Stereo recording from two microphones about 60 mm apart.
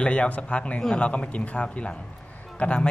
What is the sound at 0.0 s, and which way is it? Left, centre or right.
A man's voice, centre.